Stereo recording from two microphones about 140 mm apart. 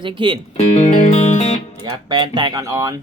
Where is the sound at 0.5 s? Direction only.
55° left (ahead or behind).